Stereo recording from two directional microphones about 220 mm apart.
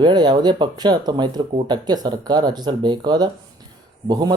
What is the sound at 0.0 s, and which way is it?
Speech, 20° right (ahead or behind).